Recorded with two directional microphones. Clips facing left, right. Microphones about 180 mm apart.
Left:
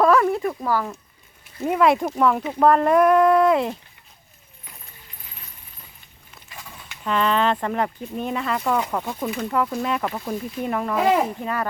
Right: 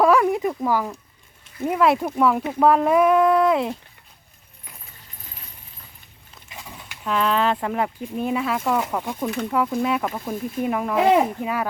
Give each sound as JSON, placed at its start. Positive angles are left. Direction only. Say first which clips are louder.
{"t": 0.0, "sound": "a sound", "louder": "even", "side_deg": -10}
{"t": 1.6, "sound": "speech", "louder": "left 1 dB", "side_deg": 0}
{"t": 6.8, "sound": "speech", "louder": "even", "side_deg": -5}
{"t": 10.9, "sound": "speech", "louder": "right 2 dB", "side_deg": -20}
{"t": 11.4, "sound": "speech", "louder": "right 1 dB", "side_deg": -10}